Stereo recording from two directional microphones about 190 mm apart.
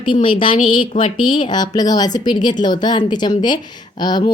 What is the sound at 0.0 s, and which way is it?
A woman's voice, 25° left (ahead or behind).